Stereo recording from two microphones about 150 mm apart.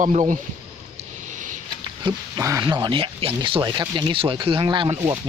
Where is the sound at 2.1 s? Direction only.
25° right (ahead or behind).